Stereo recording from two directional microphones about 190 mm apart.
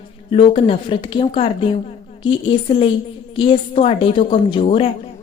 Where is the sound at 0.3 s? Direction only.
30° left (ahead or behind).